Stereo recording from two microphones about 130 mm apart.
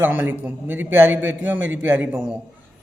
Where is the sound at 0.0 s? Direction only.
15° right (ahead or behind).